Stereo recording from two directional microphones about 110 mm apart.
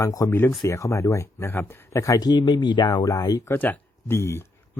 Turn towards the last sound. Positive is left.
turn(degrees=25)  # may be behind; listen again after turning